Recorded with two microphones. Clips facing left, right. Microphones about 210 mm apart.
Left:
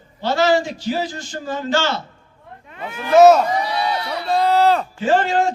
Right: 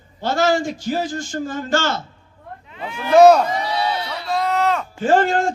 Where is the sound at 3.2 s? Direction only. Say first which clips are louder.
Even; centre (ahead or behind).